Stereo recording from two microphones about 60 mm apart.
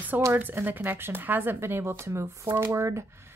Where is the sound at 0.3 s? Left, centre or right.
Right.